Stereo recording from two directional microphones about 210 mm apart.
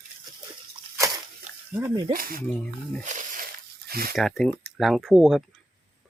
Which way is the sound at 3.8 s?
45° right (ahead or behind).